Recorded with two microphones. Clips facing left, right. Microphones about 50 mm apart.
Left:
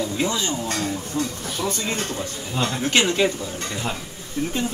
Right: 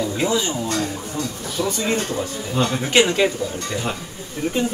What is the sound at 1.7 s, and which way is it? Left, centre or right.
Speech, centre.